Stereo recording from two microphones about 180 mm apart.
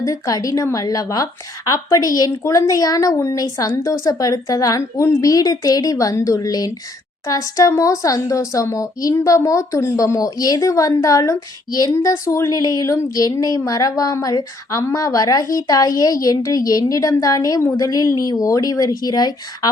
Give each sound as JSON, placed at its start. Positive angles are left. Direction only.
{"t": 0.0, "sound": "speech", "side_deg": 20}